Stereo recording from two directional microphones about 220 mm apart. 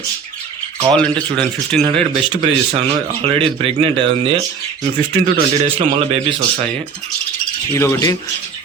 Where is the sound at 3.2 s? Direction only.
25° right (ahead or behind).